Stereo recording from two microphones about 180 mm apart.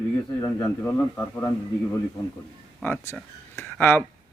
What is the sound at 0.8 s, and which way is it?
A man's voice, 10° left (ahead or behind).